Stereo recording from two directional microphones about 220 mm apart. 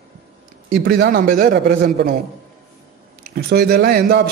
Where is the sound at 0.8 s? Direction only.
45° right (ahead or behind).